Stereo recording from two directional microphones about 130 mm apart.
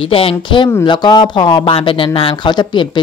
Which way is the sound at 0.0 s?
45° left (ahead or behind).